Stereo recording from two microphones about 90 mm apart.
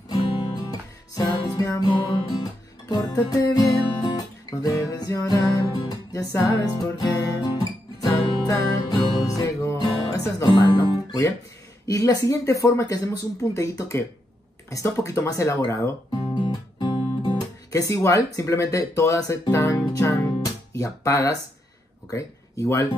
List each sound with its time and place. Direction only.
0.3 s music: 80° left
0.6 s music: 45° left (ahead or behind)
9.8 s music: 45° left (ahead or behind)
11.1 s speech: 35° left (ahead or behind)
16.3 s guitar: 55° left (ahead or behind); by 19.7 s 35° left (ahead or behind)
19.9 s music: 35° left (ahead or behind)
20.7 s speech: 35° left (ahead or behind)